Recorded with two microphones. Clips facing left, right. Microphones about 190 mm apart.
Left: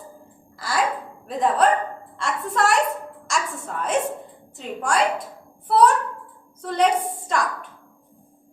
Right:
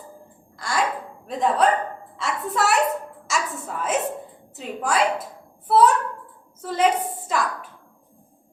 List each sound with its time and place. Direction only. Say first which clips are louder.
0.5 s a woman's voice: left 1 dB; centre (ahead or behind)